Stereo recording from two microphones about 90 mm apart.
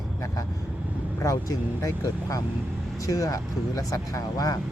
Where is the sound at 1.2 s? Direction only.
40° left (ahead or behind).